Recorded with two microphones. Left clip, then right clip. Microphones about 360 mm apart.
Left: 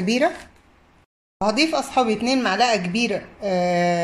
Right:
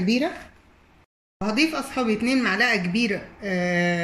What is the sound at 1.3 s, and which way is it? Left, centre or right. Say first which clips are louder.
Speech: left 4 dB; centre.